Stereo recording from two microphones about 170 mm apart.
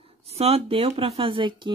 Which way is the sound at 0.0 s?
35° right (ahead or behind).